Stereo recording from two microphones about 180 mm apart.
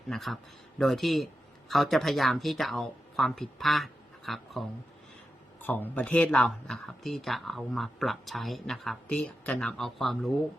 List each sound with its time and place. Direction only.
0.1 s speech: centre (ahead or behind)
5.6 s speech: 10° left (ahead or behind)